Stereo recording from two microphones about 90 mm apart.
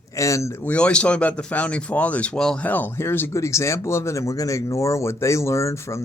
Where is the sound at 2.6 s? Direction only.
25° left (ahead or behind).